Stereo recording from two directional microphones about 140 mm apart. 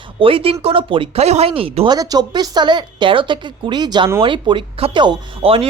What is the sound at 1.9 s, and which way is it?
Speech, 25° right (ahead or behind).